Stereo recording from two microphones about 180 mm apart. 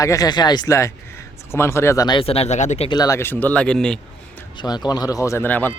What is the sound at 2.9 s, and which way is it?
Speech, 20° left (ahead or behind).